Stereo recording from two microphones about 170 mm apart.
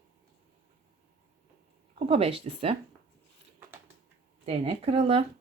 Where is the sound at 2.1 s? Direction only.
35° right (ahead or behind).